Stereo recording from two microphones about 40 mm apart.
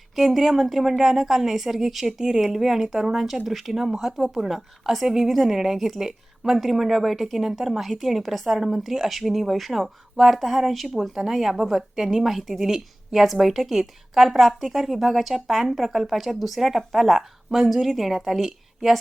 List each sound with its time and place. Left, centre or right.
0.2 s a woman's voice: centre